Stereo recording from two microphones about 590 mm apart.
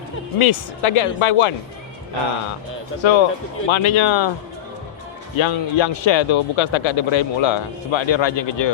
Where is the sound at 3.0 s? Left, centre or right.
Left.